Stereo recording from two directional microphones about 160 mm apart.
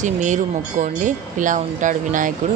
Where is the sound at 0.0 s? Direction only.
50° right (ahead or behind).